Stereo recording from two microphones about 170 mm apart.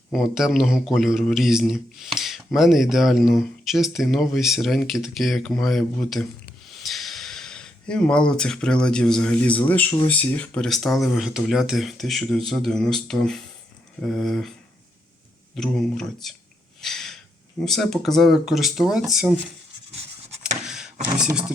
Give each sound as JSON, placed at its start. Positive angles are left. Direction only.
{"t": 0.1, "sound": "speech", "side_deg": 0}
{"t": 15.5, "sound": "speech", "side_deg": 5}
{"t": 16.8, "sound": "gasp", "side_deg": 0}
{"t": 17.7, "sound": "speech", "side_deg": 0}
{"t": 19.9, "sound": "a sound", "side_deg": -40}
{"t": 20.7, "sound": "vehicle", "side_deg": -5}
{"t": 21.2, "sound": "speech", "side_deg": -5}